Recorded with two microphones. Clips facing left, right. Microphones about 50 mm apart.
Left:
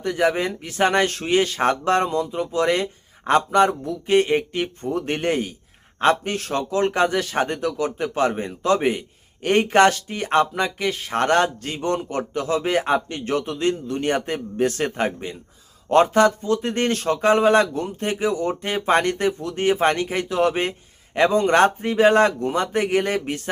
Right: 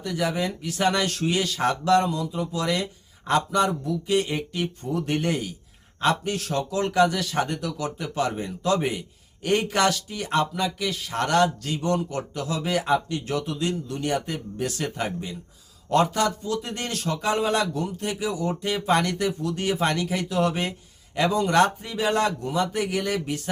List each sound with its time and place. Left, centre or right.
0.0 s a man's voice: left